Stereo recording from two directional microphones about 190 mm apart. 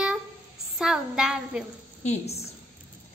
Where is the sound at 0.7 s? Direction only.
5° right (ahead or behind).